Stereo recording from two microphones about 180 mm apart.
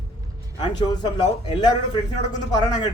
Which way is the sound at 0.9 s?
20° left (ahead or behind).